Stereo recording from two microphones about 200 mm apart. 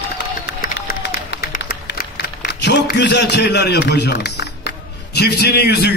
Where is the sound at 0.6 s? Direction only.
55° left (ahead or behind).